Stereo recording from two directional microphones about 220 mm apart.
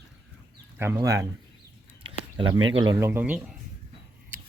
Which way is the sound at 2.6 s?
65° right (ahead or behind).